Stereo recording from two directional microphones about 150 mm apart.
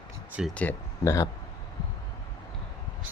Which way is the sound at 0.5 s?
10° left (ahead or behind).